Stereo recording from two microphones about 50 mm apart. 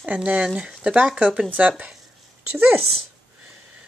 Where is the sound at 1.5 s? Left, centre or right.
Right.